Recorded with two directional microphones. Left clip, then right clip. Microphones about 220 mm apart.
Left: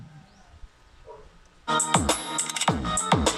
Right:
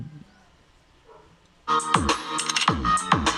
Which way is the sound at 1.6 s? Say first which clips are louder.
Right 2 dB; 20° left (ahead or behind).